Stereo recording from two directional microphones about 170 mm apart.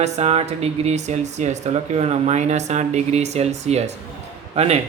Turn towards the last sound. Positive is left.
turn(degrees=-35)  # may be behind; listen again after turning